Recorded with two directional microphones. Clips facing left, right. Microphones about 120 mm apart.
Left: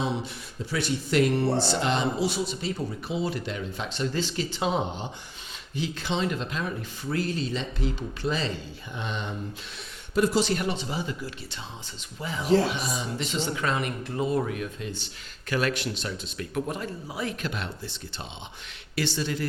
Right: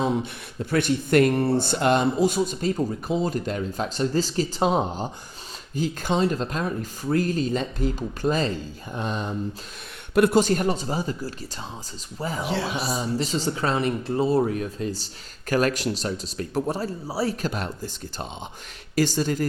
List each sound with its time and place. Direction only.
0.6 s speech: 55° right (ahead or behind)
10.2 s speech: 55° right (ahead or behind)